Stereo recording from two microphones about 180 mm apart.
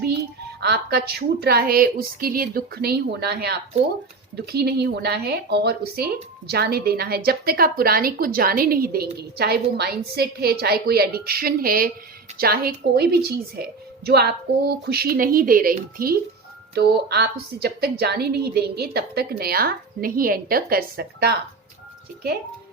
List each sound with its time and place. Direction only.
0.6 s a woman's voice: 60° right (ahead or behind)
16.7 s a woman's voice: 65° right (ahead or behind)